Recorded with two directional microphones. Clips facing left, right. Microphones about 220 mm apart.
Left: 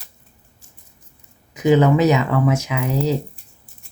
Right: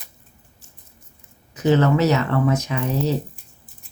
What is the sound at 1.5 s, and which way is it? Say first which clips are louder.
Speech: left 3 dB; 15° left (ahead or behind).